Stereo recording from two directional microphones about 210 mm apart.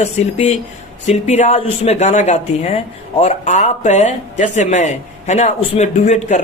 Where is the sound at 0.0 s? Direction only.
30° left (ahead or behind).